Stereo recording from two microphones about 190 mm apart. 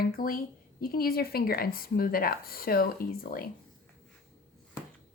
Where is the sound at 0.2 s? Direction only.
50° left (ahead or behind).